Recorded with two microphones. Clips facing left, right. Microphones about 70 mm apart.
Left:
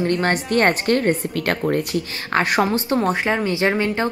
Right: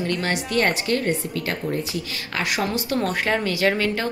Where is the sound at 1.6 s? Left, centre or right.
Left.